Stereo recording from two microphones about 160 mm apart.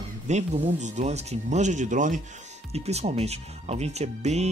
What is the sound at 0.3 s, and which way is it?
Speech, 45° right (ahead or behind).